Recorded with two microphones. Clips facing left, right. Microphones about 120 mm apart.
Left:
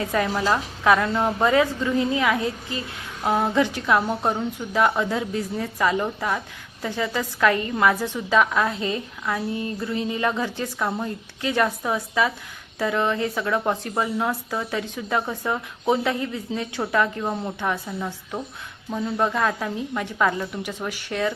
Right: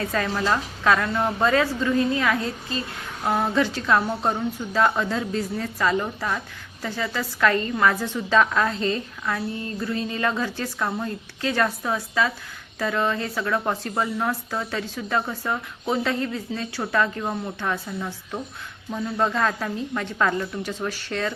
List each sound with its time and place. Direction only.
0.0 s a woman's voice: 15° left (ahead or behind)